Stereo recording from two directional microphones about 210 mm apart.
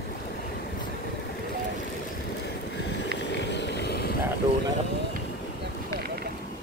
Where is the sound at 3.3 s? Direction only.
55° left (ahead or behind).